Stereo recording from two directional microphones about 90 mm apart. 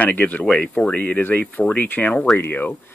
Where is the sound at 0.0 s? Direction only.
20° left (ahead or behind).